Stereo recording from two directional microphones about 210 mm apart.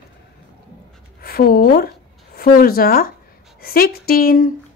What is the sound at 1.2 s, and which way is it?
A woman's voice, 45° left (ahead or behind).